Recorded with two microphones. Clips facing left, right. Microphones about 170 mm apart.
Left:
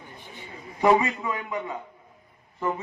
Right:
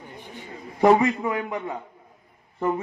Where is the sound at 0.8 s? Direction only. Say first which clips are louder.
Right 3 dB; 55° right (ahead or behind).